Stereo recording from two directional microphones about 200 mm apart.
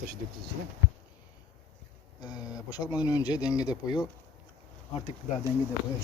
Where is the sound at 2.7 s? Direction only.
20° left (ahead or behind).